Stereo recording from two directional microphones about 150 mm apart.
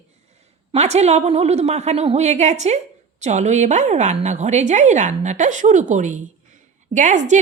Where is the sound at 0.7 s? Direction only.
45° right (ahead or behind).